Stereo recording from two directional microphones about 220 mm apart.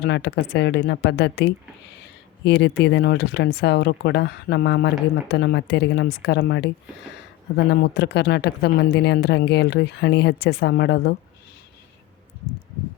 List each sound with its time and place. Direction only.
0.0 s speech: 50° left (ahead or behind)